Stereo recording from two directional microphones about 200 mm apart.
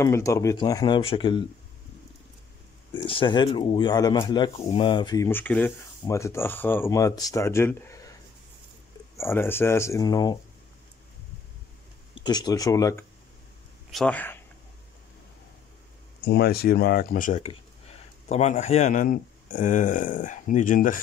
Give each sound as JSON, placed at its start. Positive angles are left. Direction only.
{"t": 0.0, "sound": "speech", "side_deg": 15}
{"t": 2.9, "sound": "speech", "side_deg": 25}
{"t": 9.1, "sound": "speech", "side_deg": 10}
{"t": 12.2, "sound": "speech", "side_deg": 20}
{"t": 16.3, "sound": "speech", "side_deg": 50}